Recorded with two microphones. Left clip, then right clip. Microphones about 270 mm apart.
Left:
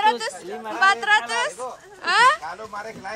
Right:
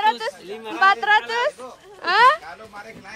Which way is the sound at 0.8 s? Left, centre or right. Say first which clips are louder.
Right 1 dB; centre.